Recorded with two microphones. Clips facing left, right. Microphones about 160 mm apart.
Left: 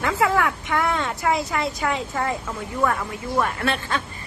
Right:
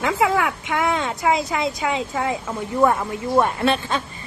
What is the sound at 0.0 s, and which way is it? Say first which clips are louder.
A woman's voice: right 1 dB; 15° right (ahead or behind).